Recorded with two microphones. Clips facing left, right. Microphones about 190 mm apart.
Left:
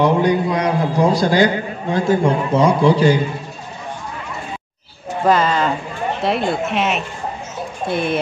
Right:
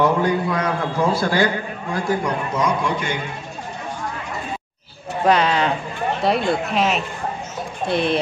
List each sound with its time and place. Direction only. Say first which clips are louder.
0.0 s a man's voice: left 3 dB; 15° left (ahead or behind); by 3.2 s 35° left (ahead or behind)
5.2 s speech: left 1 dB; centre (ahead or behind)